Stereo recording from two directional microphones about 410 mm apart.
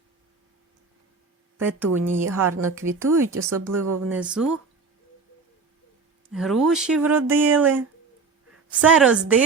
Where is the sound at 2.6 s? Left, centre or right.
Centre.